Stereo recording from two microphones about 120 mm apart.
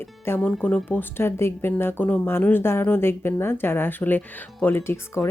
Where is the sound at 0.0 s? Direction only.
15° left (ahead or behind).